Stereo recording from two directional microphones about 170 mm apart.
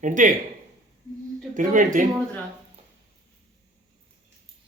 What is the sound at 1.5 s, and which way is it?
Speech, 50° right (ahead or behind).